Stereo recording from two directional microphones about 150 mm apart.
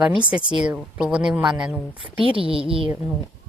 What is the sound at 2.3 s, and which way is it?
Speech, 35° right (ahead or behind).